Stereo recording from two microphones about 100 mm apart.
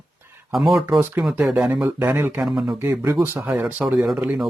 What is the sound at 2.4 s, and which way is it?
Speech, 5° right (ahead or behind).